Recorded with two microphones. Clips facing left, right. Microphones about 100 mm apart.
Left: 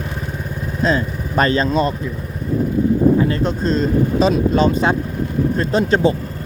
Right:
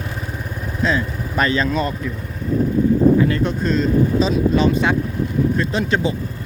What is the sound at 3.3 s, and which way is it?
Speech, 30° left (ahead or behind).